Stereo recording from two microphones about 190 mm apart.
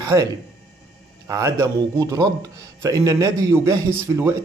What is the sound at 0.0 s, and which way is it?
Speech, 15° right (ahead or behind).